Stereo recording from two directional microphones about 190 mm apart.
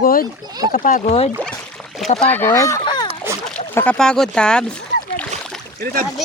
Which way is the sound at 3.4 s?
10° left (ahead or behind).